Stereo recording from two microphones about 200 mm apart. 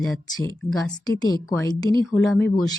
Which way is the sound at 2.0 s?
Centre (ahead or behind).